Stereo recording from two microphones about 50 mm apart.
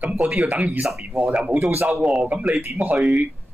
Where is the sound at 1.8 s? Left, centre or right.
Right.